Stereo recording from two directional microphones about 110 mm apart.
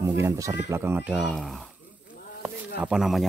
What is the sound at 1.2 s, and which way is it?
Speech, centre (ahead or behind).